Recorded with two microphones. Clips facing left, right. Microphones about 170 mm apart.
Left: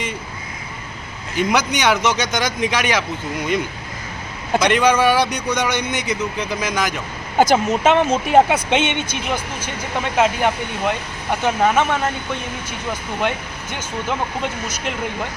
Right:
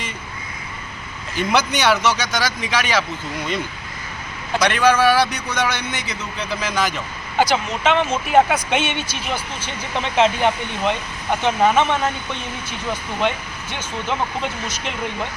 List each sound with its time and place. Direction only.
1.4 s a man's voice: 15° left (ahead or behind)
4.6 s a man's voice: 15° left (ahead or behind)
7.3 s speech: 45° left (ahead or behind)
8.4 s a man's voice: 20° left (ahead or behind); by 11.9 s 5° left (ahead or behind)
14.7 s a man's voice: 10° left (ahead or behind)